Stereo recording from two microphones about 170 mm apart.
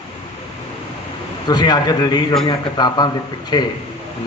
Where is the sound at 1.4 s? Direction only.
25° left (ahead or behind).